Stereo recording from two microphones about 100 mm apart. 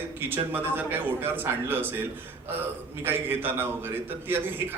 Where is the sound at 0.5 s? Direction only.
20° right (ahead or behind).